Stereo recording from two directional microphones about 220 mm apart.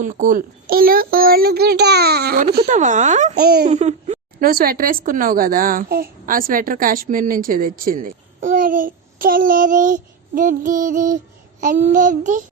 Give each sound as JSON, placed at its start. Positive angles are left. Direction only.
{"t": 0.0, "sound": "a child's voice", "side_deg": -35}